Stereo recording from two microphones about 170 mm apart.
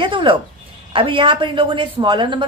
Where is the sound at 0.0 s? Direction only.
30° right (ahead or behind).